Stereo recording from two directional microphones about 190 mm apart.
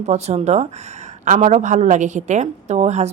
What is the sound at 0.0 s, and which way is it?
A woman's voice, 35° right (ahead or behind).